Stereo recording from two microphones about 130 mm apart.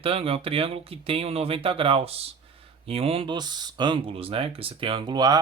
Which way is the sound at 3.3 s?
35° right (ahead or behind).